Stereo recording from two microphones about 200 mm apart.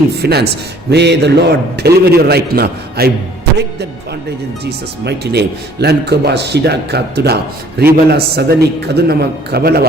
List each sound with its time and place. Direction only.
0.2 s a man's voice: 55° right (ahead or behind)
4.6 s a man's voice: 55° right (ahead or behind)